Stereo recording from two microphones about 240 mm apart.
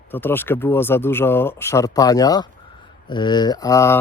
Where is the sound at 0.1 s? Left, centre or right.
Centre.